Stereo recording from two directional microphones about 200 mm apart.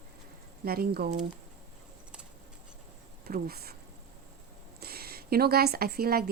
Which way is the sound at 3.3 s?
50° right (ahead or behind).